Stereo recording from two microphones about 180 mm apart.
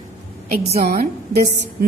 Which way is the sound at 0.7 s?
60° right (ahead or behind).